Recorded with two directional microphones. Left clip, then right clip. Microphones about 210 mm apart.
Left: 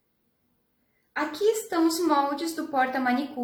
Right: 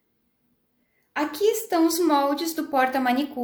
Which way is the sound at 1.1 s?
45° right (ahead or behind).